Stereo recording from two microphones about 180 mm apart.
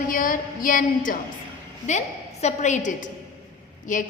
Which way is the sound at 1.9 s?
40° left (ahead or behind).